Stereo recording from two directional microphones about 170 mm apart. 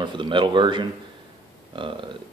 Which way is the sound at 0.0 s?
30° right (ahead or behind).